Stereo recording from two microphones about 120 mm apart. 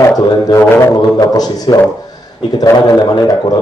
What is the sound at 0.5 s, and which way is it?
A man's voice, 20° left (ahead or behind).